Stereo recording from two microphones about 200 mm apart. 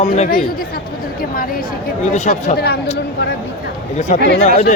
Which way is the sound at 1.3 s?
45° left (ahead or behind).